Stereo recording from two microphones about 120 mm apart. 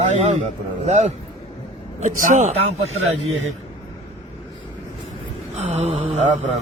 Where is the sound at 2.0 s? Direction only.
90° right.